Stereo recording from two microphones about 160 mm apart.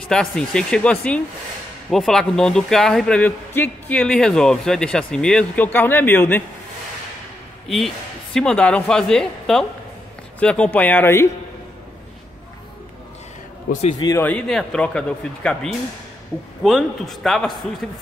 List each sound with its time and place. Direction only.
0.0 s speech: 5° left (ahead or behind)
7.6 s speech: centre (ahead or behind)
13.7 s a man's voice: 45° left (ahead or behind)
13.9 s speech: 25° left (ahead or behind)
14.2 s speech: 5° left (ahead or behind)